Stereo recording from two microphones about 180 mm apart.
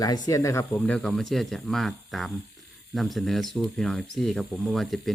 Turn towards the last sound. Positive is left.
turn(degrees=0)  # may be behind; listen again after turning